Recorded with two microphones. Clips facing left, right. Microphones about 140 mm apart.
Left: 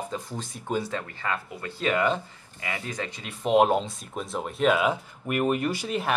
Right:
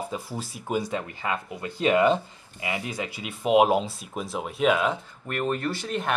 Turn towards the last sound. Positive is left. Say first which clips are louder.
# left 1 dB
turn(degrees=5)  # may be behind; listen again after turning